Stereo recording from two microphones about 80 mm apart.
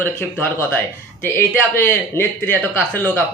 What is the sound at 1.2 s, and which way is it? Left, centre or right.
Speech, left.